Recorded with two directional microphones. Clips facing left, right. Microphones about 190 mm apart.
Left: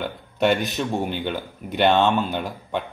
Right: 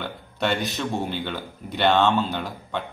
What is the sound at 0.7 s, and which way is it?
A man's voice, 15° left (ahead or behind).